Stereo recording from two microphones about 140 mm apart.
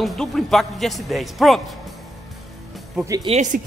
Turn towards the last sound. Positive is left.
turn(degrees=-60)  # may be behind; listen again after turning